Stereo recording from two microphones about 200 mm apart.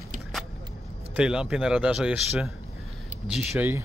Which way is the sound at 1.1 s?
5° right (ahead or behind).